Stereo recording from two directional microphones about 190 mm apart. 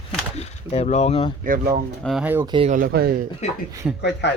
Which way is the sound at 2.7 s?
50° right (ahead or behind).